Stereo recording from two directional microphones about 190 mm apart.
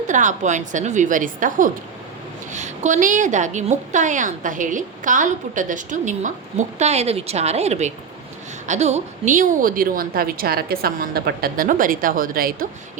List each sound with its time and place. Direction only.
0.1 s a woman's voice: 40° right (ahead or behind)